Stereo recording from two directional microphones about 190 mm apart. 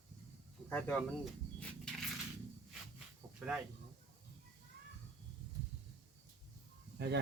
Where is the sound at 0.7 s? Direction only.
5° left (ahead or behind).